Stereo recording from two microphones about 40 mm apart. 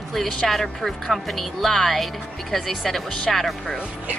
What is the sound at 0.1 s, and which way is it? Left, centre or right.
Speech, centre.